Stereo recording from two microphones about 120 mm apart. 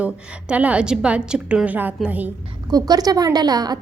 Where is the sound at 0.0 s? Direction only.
10° right (ahead or behind).